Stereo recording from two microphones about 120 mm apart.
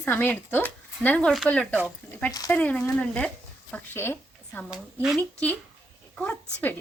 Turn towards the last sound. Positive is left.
turn(degrees=15)  # may be behind; listen again after turning